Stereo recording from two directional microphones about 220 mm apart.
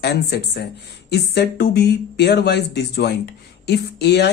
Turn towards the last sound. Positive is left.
turn(degrees=50)  # may be behind; listen again after turning